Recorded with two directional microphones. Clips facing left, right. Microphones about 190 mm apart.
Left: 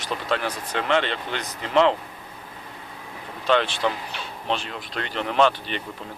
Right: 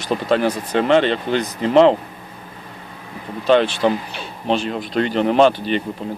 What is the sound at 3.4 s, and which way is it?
Speech, 35° right (ahead or behind).